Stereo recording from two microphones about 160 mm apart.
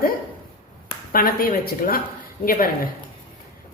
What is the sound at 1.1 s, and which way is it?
A woman's voice, 65° left (ahead or behind).